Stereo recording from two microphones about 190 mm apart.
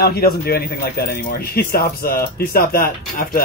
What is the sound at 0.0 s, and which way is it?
Speech, 55° left (ahead or behind).